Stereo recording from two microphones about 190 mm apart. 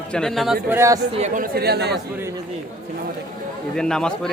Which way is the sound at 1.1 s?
40° right (ahead or behind).